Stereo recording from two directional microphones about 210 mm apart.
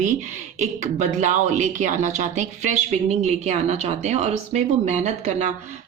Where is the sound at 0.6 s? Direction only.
35° right (ahead or behind).